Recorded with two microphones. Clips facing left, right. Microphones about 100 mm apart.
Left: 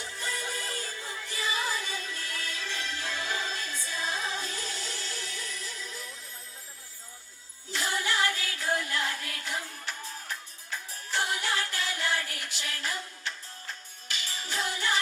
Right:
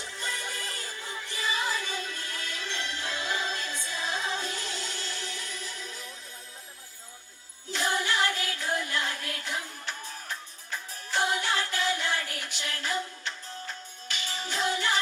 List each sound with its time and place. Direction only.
0.0 s music: 25° right (ahead or behind)
7.7 s music: 20° right (ahead or behind)
11.1 s music: 25° right (ahead or behind)
14.1 s music: 25° right (ahead or behind)